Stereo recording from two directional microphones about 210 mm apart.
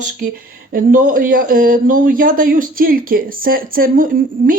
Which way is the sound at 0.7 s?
40° right (ahead or behind).